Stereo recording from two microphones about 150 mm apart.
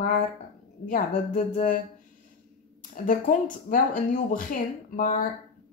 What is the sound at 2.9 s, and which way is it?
Speech, 65° left (ahead or behind).